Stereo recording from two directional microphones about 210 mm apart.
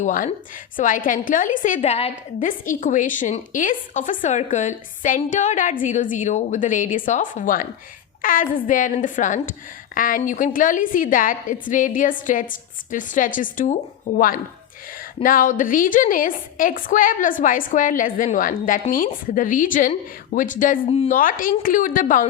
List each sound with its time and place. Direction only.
0.0 s a woman's voice: 35° left (ahead or behind)
2.5 s a woman's voice: 40° left (ahead or behind)